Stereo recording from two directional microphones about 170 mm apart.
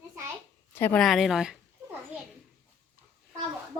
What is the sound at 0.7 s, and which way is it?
Speech, 10° left (ahead or behind).